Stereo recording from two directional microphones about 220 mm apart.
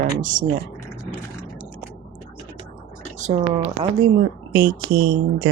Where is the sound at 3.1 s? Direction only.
35° right (ahead or behind).